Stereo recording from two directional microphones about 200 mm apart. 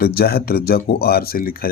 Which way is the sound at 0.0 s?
50° left (ahead or behind).